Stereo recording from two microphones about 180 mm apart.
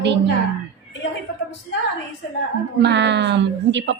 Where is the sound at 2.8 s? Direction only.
75° right (ahead or behind).